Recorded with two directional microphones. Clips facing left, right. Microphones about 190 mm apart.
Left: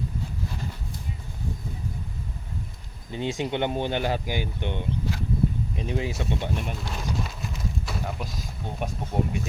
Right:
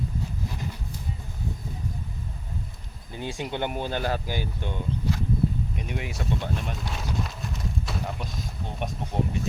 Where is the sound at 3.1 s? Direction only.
20° left (ahead or behind).